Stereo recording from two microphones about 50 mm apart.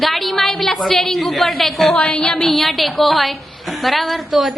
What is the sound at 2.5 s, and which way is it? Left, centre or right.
A woman's voice, centre.